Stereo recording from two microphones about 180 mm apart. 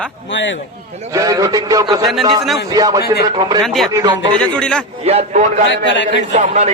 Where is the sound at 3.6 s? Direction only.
Centre (ahead or behind).